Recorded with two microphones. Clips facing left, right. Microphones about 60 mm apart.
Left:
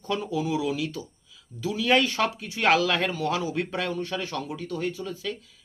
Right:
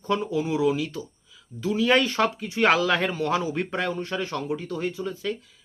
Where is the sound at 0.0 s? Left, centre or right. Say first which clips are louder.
Right 3 dB; right.